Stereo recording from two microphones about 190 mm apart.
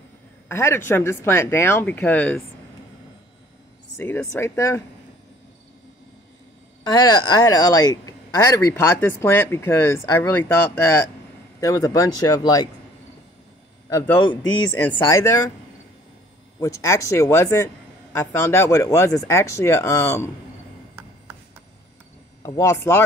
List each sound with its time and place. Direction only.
0.5 s speech: 15° left (ahead or behind)
3.9 s speech: 10° left (ahead or behind)
6.8 s speech: 20° left (ahead or behind)
13.8 s a man's voice: 15° left (ahead or behind)
16.5 s speech: 15° left (ahead or behind)
22.4 s speech: 15° left (ahead or behind)